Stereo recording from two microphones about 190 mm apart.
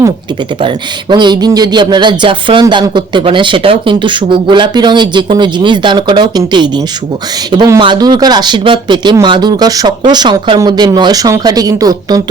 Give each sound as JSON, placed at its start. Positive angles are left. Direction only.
{"t": 0.6, "sound": "speech", "side_deg": -25}